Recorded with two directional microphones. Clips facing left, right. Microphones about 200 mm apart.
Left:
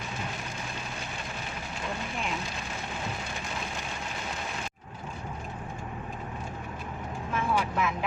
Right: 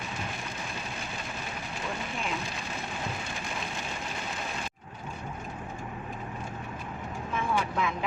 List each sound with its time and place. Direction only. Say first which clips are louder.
7.3 s vehicle: left 1 dB; 5° left (ahead or behind)